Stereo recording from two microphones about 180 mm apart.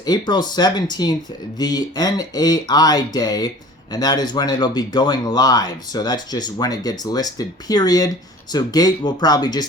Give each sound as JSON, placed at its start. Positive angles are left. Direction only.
{"t": 0.0, "sound": "speech", "side_deg": 25}